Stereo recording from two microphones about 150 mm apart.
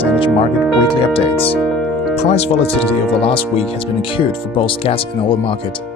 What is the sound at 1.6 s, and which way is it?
Music, centre (ahead or behind).